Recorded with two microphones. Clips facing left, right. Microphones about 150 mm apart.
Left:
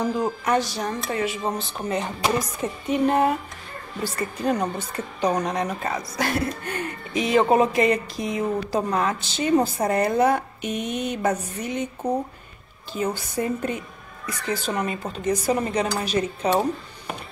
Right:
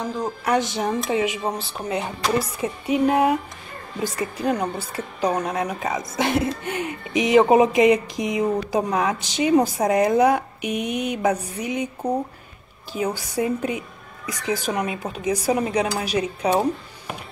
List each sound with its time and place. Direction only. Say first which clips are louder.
0.0 s speech: left 3 dB; 10° left (ahead or behind)
0.6 s a woman's voice: right 3 dB; 20° right (ahead or behind)
6.1 s a woman's voice: right 4 dB; 20° right (ahead or behind)